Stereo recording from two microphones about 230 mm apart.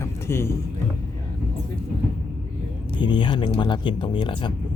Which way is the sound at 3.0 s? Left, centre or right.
Centre.